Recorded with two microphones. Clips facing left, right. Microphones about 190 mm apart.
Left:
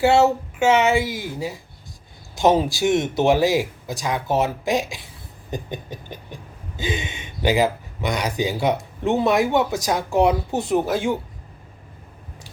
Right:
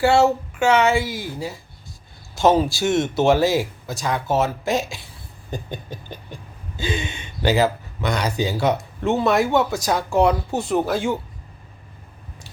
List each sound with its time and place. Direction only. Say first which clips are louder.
0.0 s speech: even; 20° left (ahead or behind)
5.5 s a sound: left 1 dB; 15° left (ahead or behind)
6.7 s speech: right 1 dB; 20° left (ahead or behind)